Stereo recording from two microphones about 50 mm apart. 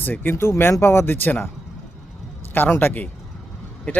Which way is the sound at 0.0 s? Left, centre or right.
Left.